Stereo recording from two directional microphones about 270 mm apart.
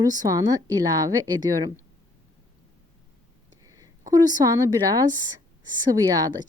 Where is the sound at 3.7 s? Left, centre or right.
Centre.